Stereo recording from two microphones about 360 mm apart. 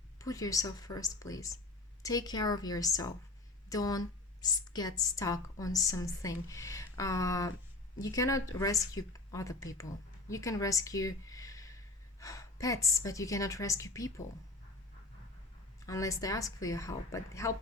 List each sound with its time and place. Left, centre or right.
0.2 s a woman's voice: centre
15.9 s a woman's voice: centre